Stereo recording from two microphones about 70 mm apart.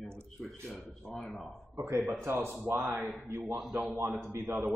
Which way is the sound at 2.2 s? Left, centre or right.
Right.